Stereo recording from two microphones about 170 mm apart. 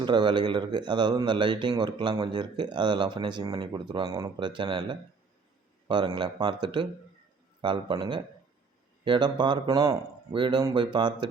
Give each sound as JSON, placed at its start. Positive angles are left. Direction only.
{"t": 0.0, "sound": "speech", "side_deg": -25}